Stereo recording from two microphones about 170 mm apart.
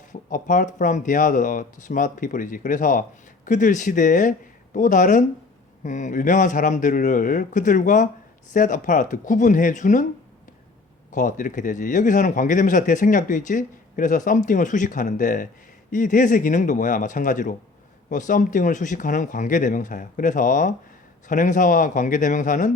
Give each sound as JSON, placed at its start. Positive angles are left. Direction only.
{"t": 0.1, "sound": "speech", "side_deg": 50}
{"t": 11.1, "sound": "speech", "side_deg": 50}